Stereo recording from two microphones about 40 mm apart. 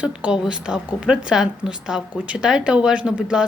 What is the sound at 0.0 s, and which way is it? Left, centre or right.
A woman's voice, right.